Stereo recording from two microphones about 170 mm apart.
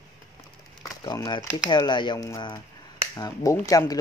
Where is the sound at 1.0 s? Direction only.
25° left (ahead or behind).